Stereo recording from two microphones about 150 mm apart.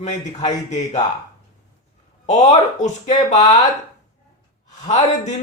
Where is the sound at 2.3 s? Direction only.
55° left (ahead or behind).